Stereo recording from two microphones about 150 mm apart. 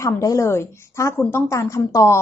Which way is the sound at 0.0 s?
20° left (ahead or behind).